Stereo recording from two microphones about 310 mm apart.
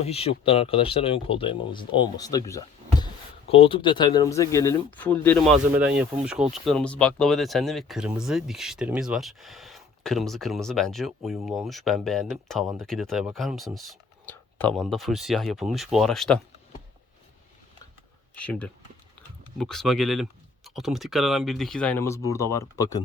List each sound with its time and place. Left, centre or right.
0.0 s speech: centre
18.3 s speech: centre